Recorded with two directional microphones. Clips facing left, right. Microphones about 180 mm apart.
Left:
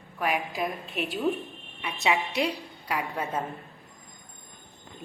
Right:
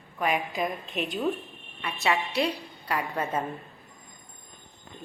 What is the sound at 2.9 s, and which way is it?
Speech, 5° left (ahead or behind).